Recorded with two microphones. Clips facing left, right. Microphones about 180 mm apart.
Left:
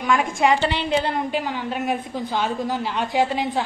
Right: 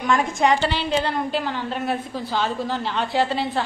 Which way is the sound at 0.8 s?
10° left (ahead or behind).